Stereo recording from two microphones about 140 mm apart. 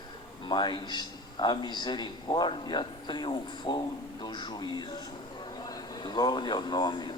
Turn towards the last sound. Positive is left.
turn(degrees=30)  # may be behind; listen again after turning